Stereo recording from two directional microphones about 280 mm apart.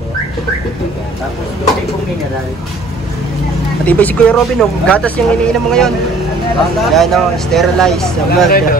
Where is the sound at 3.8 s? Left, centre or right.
Centre.